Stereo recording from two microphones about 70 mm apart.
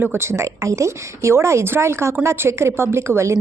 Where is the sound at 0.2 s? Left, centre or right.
Right.